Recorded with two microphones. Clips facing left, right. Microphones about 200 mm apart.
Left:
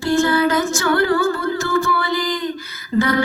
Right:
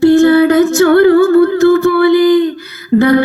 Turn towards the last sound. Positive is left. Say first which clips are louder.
# right 9 dB
turn(degrees=-60)  # may be behind; listen again after turning